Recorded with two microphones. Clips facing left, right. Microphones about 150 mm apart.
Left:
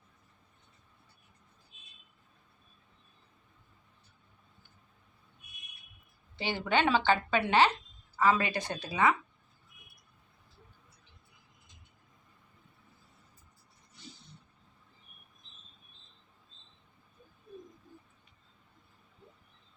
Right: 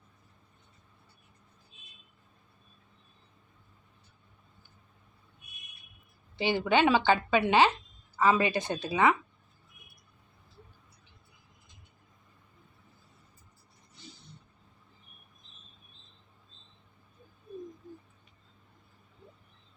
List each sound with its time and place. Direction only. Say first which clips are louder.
6.3 s a woman's voice: right 4 dB; 15° right (ahead or behind)